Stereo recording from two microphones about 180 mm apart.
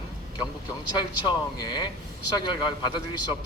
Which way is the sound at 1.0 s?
25° left (ahead or behind).